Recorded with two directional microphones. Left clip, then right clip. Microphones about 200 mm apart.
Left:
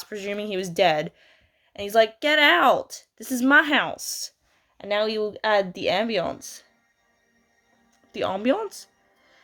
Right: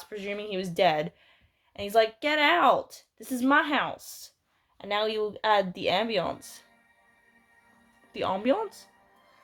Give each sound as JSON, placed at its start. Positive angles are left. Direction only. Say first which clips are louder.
{"t": 0.0, "sound": "speech", "louder": "left 4 dB", "side_deg": 35}
{"t": 4.8, "sound": "speech", "louder": "left 4 dB", "side_deg": 25}
{"t": 8.1, "sound": "speech", "louder": "left 3 dB", "side_deg": 30}